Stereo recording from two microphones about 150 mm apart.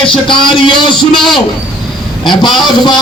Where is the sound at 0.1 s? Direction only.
35° left (ahead or behind).